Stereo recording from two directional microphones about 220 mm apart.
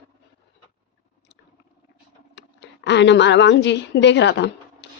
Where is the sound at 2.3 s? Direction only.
50° left (ahead or behind).